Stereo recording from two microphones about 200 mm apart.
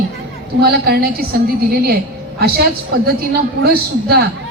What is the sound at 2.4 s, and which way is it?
A woman's voice, 50° right (ahead or behind).